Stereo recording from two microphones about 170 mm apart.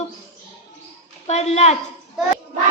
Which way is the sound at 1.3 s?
40° left (ahead or behind).